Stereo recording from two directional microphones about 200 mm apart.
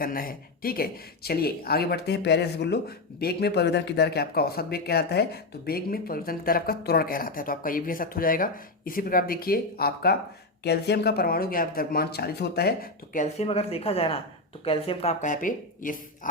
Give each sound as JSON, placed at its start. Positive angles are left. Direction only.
{"t": 0.0, "sound": "speech", "side_deg": 45}